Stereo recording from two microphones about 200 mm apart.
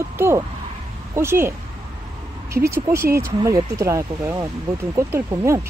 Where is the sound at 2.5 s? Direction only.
15° right (ahead or behind).